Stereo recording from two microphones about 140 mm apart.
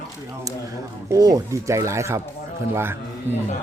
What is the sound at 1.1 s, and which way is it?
Speech, 25° right (ahead or behind).